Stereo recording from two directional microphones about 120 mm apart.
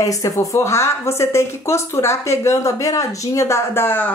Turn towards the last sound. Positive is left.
turn(degrees=20)  # may be behind; listen again after turning